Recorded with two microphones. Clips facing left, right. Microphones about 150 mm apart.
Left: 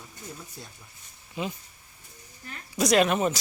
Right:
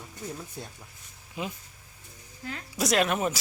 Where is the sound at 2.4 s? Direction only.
90° right.